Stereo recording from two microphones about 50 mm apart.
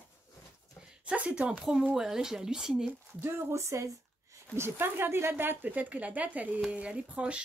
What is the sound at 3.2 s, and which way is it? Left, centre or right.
Speech, right.